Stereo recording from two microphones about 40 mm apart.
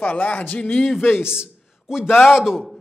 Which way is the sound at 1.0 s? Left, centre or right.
Left.